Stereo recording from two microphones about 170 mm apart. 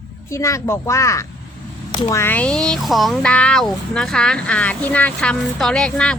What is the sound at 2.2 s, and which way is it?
A woman's voice, 10° left (ahead or behind).